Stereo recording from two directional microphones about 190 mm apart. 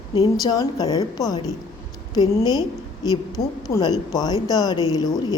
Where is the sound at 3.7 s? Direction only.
30° left (ahead or behind).